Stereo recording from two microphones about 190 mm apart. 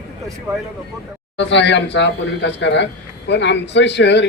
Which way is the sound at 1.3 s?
70° left (ahead or behind).